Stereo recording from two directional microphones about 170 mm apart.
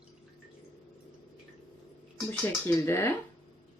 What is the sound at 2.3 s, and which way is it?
Speech, 15° left (ahead or behind).